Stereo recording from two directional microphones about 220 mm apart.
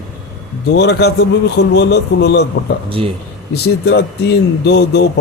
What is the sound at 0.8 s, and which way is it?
Speech, 50° left (ahead or behind).